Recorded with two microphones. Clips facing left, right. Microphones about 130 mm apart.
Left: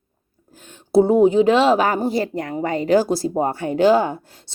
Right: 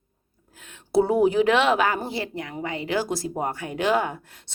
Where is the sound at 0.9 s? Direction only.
25° left (ahead or behind).